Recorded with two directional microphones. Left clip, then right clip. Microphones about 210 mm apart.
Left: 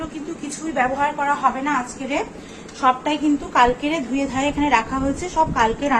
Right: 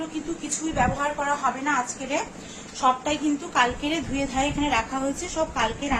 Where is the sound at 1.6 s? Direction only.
5° left (ahead or behind).